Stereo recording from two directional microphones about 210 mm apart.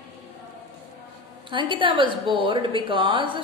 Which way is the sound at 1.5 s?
25° right (ahead or behind).